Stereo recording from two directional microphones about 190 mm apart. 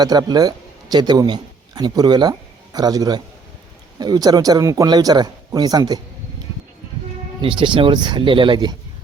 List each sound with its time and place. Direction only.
0.0 s a man's voice: 20° right (ahead or behind)
7.4 s speech: 25° right (ahead or behind)